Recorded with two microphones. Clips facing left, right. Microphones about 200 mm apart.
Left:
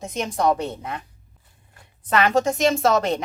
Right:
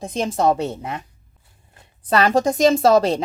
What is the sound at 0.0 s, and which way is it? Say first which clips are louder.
A woman's voice: right 3 dB; 30° right (ahead or behind).